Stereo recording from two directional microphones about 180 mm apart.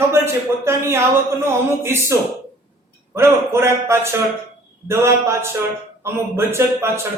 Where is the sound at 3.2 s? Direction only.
15° right (ahead or behind).